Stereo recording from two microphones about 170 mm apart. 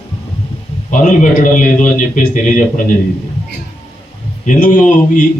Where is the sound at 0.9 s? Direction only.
50° left (ahead or behind).